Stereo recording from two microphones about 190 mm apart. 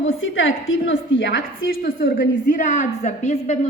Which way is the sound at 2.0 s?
45° left (ahead or behind).